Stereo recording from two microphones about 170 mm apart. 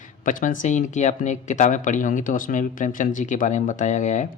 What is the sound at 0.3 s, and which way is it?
Speech, 50° left (ahead or behind).